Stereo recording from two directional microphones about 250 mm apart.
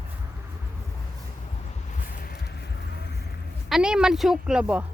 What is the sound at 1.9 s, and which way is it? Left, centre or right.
Vehicle, left.